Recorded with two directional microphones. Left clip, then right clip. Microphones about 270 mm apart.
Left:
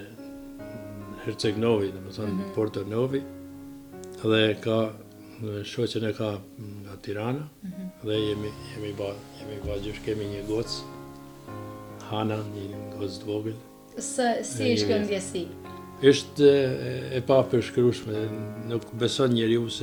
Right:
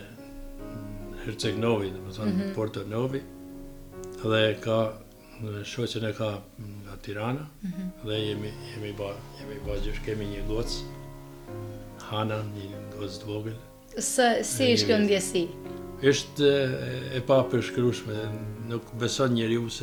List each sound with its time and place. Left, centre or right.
1.2 s speech: left
12.1 s speech: left
13.9 s a woman's voice: right
16.0 s speech: left